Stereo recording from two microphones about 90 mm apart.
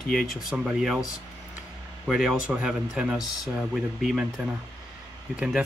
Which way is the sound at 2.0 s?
5° right (ahead or behind).